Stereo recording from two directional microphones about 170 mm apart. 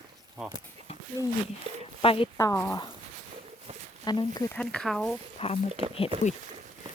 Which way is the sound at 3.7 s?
40° right (ahead or behind).